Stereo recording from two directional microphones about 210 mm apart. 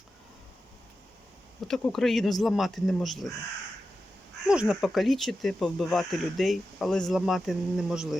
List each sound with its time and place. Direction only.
1.6 s speech: centre (ahead or behind)
4.4 s speech: 5° right (ahead or behind)